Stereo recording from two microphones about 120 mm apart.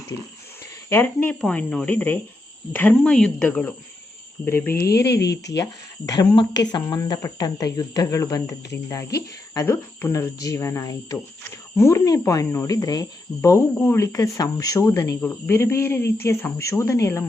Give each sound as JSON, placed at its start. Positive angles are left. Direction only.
{"t": 0.9, "sound": "speech", "side_deg": 15}
{"t": 6.1, "sound": "speech", "side_deg": 40}